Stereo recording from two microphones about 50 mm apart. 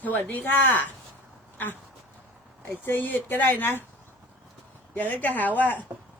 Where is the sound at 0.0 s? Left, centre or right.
Left.